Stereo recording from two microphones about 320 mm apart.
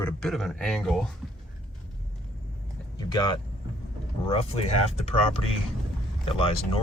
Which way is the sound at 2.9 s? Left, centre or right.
Centre.